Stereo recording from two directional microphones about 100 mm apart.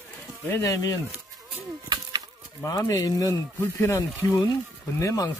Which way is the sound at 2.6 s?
30° left (ahead or behind).